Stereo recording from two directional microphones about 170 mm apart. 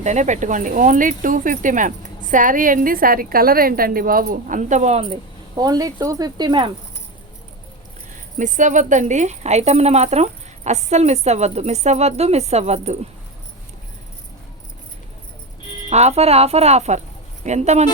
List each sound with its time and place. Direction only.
0.0 s speech: 45° right (ahead or behind)
5.5 s speech: 20° right (ahead or behind)
8.4 s speech: 45° right (ahead or behind)
15.9 s speech: 40° right (ahead or behind)